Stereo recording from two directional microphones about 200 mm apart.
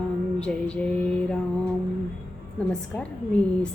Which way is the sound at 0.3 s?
5° left (ahead or behind).